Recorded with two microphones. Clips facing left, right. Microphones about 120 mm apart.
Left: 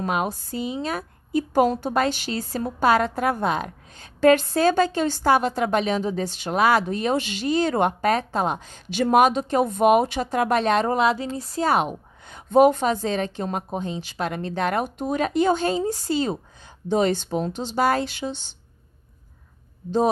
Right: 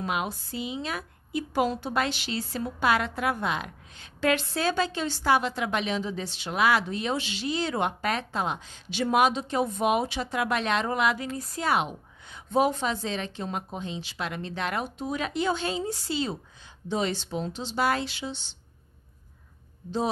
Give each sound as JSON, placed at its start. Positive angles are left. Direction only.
{"t": 0.0, "sound": "a woman's voice", "side_deg": 45}
{"t": 11.0, "sound": "a woman's voice", "side_deg": 30}